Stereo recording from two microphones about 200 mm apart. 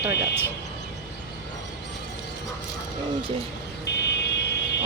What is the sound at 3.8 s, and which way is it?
Vehicle, 60° left (ahead or behind).